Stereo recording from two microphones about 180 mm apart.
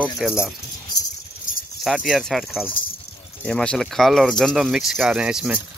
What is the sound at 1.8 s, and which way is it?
Speech, centre (ahead or behind).